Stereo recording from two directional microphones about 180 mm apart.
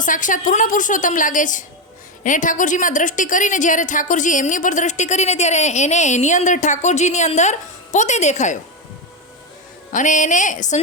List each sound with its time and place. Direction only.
0.0 s a woman's voice: 45° left (ahead or behind)
9.9 s a woman's voice: 45° left (ahead or behind)